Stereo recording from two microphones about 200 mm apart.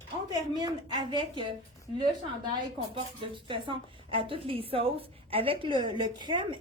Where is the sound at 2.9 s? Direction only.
25° right (ahead or behind).